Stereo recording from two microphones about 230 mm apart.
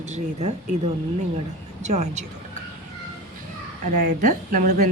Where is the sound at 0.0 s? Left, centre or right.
Right.